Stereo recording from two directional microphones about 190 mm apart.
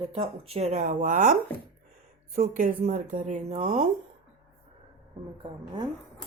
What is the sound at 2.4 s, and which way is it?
Speech, 45° right (ahead or behind).